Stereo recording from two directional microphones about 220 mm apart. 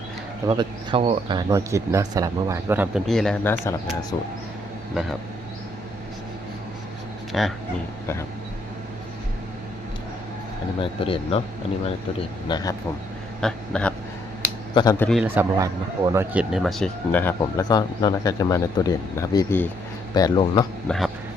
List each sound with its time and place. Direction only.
0.4 s speech: 20° right (ahead or behind); by 4.3 s 15° left (ahead or behind)
7.3 s a sound: centre (ahead or behind)
11.0 s speech: 25° left (ahead or behind)
12.5 s speech: 20° left (ahead or behind)
13.4 s a sound: 5° left (ahead or behind)
14.8 s speech: 15° left (ahead or behind)
15.2 s speech: 10° right (ahead or behind); by 20.7 s 15° left (ahead or behind)
20.8 s speech: centre (ahead or behind)